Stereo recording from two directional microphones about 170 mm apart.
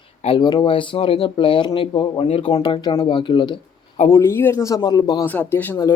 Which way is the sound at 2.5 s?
25° left (ahead or behind).